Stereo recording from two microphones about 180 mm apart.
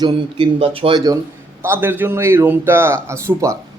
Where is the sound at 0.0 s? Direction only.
25° right (ahead or behind).